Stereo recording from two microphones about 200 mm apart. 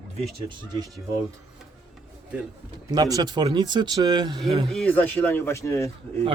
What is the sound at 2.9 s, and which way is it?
Speech, 20° right (ahead or behind).